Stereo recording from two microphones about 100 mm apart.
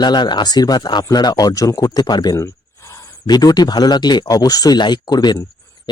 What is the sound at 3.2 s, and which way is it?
Speech, 45° left (ahead or behind).